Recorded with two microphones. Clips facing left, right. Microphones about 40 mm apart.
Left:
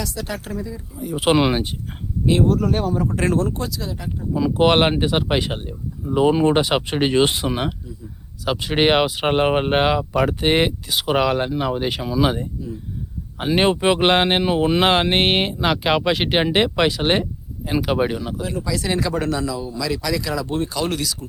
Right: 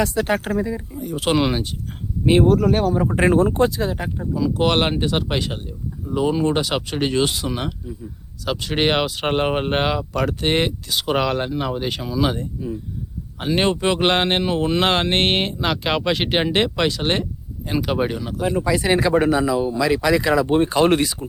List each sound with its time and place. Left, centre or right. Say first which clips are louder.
0.0 s speech: right 8 dB; right
0.9 s speech: left 3 dB; centre
2.2 s speech: right 3 dB; right
4.4 s speech: left 3 dB; left; by 18.3 s centre
18.3 s speech: right 5 dB; right